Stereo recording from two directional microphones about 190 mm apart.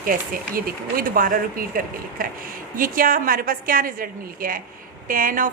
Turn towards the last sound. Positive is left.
turn(degrees=-45)  # may be behind; listen again after turning